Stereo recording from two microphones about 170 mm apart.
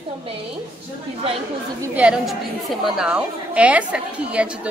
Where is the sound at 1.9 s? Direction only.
5° right (ahead or behind).